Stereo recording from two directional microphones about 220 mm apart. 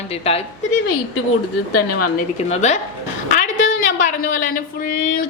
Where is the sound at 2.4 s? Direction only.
30° left (ahead or behind).